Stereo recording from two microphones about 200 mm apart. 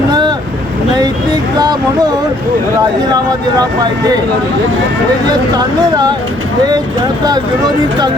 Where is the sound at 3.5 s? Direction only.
20° right (ahead or behind).